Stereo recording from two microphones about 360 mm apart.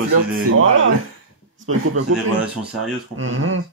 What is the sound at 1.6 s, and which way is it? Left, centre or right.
Speech, right.